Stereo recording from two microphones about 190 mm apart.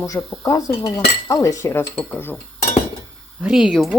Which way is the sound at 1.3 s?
15° left (ahead or behind).